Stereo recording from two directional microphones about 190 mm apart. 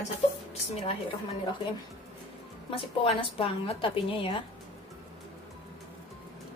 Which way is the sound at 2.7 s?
30° left (ahead or behind).